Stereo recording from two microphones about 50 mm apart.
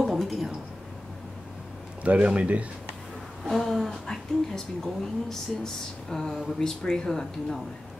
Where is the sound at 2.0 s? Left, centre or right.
Right.